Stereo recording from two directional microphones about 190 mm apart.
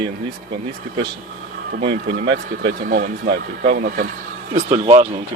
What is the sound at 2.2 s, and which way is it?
Speech, 65° right (ahead or behind).